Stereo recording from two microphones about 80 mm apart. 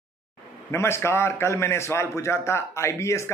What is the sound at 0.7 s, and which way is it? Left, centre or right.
A man's voice, left.